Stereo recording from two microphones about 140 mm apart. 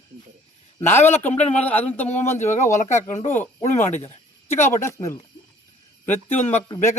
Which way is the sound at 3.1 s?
50° left (ahead or behind).